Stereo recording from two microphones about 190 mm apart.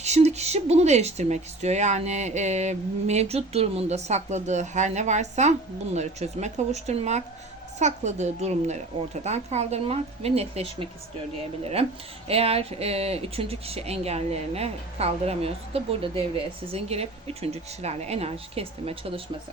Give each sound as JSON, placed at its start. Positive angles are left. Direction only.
{"t": 0.0, "sound": "speech", "side_deg": -35}
{"t": 12.3, "sound": "speech", "side_deg": -30}